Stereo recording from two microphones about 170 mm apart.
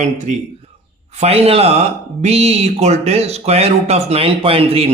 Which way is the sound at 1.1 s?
40° right (ahead or behind).